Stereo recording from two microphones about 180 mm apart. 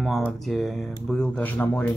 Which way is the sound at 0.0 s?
Centre (ahead or behind).